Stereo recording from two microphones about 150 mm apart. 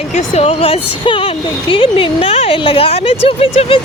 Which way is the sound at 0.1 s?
45° left (ahead or behind).